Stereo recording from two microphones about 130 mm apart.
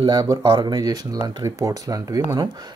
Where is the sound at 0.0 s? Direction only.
30° right (ahead or behind).